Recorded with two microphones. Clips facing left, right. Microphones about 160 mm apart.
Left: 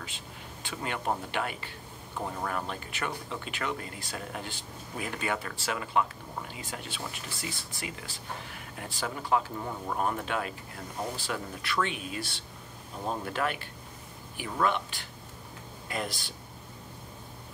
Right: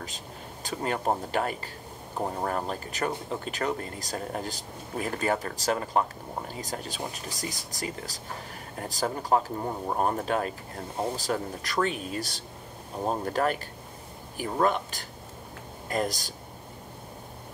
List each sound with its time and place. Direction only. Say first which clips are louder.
0.7 s speech: right 4 dB; 40° right (ahead or behind)